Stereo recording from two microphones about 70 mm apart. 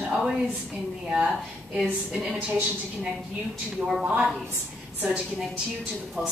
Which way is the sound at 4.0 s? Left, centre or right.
Centre.